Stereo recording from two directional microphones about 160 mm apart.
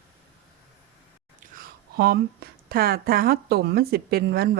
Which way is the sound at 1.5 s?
70° right (ahead or behind).